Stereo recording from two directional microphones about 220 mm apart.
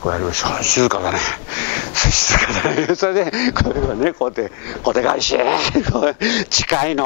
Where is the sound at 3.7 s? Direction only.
25° left (ahead or behind).